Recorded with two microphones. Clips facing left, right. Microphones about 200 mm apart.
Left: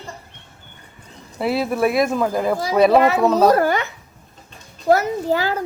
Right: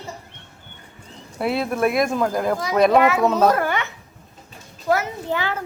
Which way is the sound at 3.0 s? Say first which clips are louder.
Left 2 dB; 35° left (ahead or behind).